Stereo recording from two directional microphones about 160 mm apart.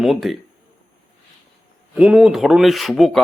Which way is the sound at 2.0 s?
5° right (ahead or behind).